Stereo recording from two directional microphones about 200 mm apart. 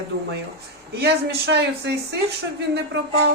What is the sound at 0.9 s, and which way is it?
Speech, 55° right (ahead or behind).